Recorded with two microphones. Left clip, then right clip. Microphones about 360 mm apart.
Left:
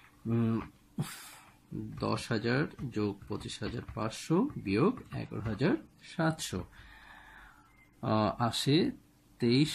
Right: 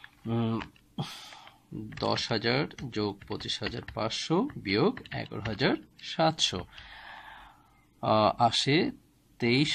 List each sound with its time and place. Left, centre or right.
0.3 s speech: right
2.0 s speech: right
3.3 s speech: right
3.6 s speech: right
8.0 s speech: right